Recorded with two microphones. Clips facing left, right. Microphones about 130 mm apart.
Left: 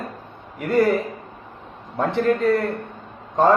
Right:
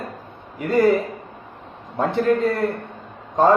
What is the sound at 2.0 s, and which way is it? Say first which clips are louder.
Speech: right 1 dB; centre (ahead or behind).